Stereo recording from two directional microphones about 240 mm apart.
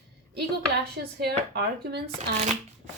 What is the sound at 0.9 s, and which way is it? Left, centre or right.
Speech, right.